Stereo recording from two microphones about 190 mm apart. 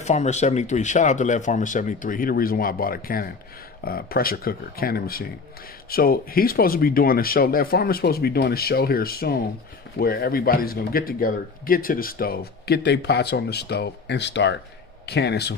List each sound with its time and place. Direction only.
0.0 s speech: 35° left (ahead or behind); by 15.5 s 60° left (ahead or behind)